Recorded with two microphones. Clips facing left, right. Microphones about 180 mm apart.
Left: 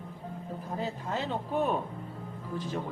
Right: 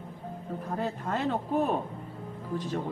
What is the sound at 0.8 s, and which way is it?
Speech, 55° right (ahead or behind).